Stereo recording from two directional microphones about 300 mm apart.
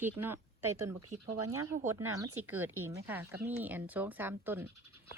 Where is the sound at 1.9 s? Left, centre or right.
Centre.